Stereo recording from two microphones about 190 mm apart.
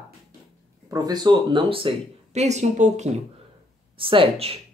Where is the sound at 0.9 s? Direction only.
20° right (ahead or behind).